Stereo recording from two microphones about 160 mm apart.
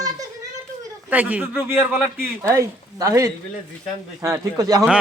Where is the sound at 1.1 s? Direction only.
10° right (ahead or behind).